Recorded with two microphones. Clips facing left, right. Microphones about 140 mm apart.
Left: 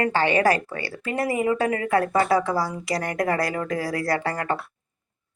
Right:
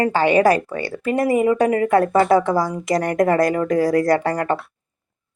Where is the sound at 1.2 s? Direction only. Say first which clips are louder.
Right 6 dB; 30° right (ahead or behind).